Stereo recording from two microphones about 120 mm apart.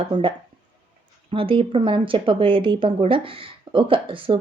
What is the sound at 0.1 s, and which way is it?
Speech, 45° right (ahead or behind).